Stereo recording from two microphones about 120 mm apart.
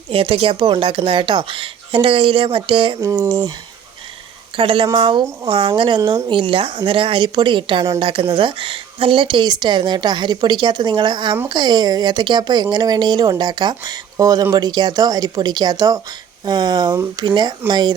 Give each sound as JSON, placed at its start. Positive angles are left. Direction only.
{"t": 0.1, "sound": "speech", "side_deg": -50}
{"t": 3.0, "sound": "speech", "side_deg": -30}
{"t": 4.5, "sound": "speech", "side_deg": -45}
{"t": 6.0, "sound": "speech", "side_deg": -25}
{"t": 6.2, "sound": "speech", "side_deg": -45}